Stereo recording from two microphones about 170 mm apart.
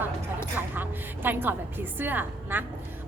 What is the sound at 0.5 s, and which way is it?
A woman's voice, 10° right (ahead or behind).